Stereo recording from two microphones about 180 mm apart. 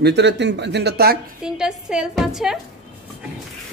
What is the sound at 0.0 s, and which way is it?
Speech, 70° right (ahead or behind).